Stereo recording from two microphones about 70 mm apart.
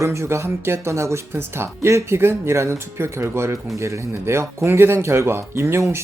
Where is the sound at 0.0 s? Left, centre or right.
Right.